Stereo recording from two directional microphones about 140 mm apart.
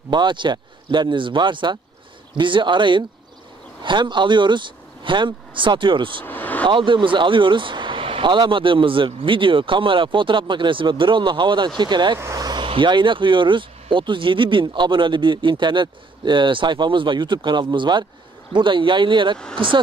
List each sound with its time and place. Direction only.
0.1 s speech: 35° right (ahead or behind)
6.2 s a sound: 10° left (ahead or behind)
6.7 s speech: 35° right (ahead or behind)
19.3 s speech: 5° left (ahead or behind)